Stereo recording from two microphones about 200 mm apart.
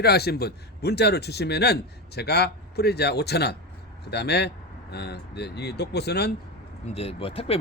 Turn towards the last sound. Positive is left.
turn(degrees=30)  # may be behind; listen again after turning